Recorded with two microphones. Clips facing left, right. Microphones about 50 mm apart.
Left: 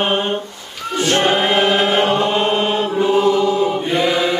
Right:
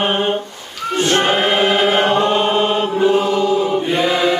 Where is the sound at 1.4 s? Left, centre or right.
Centre.